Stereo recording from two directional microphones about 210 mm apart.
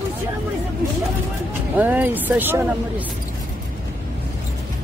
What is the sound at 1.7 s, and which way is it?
Speech, 10° right (ahead or behind).